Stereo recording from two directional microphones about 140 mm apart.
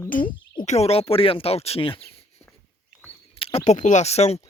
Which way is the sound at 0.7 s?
45° left (ahead or behind).